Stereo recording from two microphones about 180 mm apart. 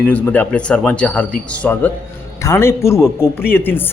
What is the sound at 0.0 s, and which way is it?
Speech, 10° left (ahead or behind).